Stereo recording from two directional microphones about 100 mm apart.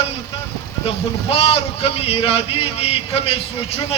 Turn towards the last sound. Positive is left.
turn(degrees=85)